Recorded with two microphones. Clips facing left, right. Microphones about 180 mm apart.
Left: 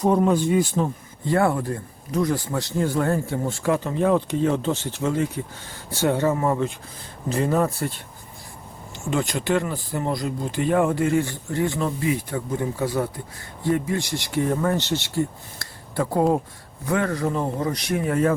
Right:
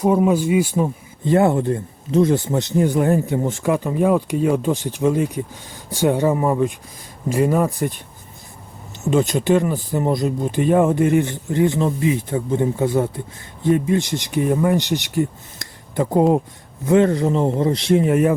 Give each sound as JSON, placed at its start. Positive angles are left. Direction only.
{"t": 0.0, "sound": "speech", "side_deg": -5}
{"t": 9.0, "sound": "speech", "side_deg": -20}